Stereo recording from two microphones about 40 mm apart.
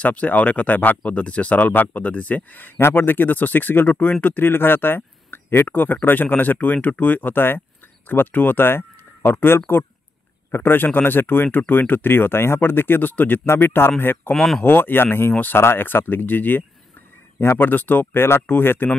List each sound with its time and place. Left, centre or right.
0.0 s speech: left
1.6 s speech: left
2.8 s speech: left
5.7 s speech: left
8.1 s speech: left
13.1 s speech: left
13.5 s speech: left
14.3 s speech: centre
14.6 s speech: left
15.5 s speech: left
17.4 s speech: left
18.2 s speech: left